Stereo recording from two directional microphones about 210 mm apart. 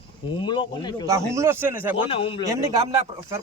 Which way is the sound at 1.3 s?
10° right (ahead or behind).